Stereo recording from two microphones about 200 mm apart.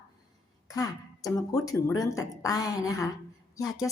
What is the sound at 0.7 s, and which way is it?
A woman's voice, 20° left (ahead or behind).